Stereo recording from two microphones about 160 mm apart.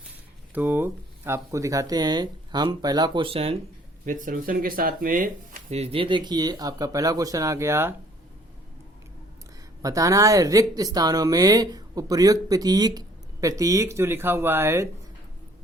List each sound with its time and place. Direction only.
0.5 s speech: 15° right (ahead or behind); by 3.6 s 35° right (ahead or behind)
4.0 s speech: 55° right (ahead or behind); by 7.9 s 15° right (ahead or behind)
9.8 s speech: 20° right (ahead or behind)